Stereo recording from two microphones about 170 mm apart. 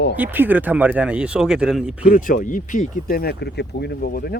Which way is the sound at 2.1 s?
55° left (ahead or behind).